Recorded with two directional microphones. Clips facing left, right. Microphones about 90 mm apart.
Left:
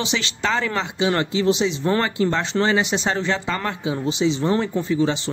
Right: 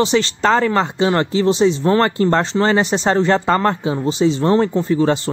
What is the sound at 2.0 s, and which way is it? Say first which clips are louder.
Speech: right 6 dB; 50° right (ahead or behind).